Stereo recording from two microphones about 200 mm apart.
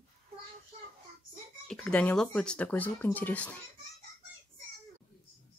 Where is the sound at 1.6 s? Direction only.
5° left (ahead or behind).